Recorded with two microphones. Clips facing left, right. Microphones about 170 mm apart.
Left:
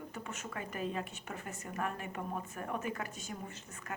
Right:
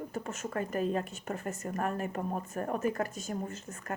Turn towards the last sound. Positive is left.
turn(degrees=-45)  # may be behind; listen again after turning